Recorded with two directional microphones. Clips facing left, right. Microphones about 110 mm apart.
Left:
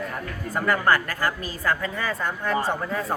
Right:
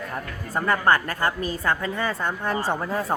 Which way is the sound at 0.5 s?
25° right (ahead or behind).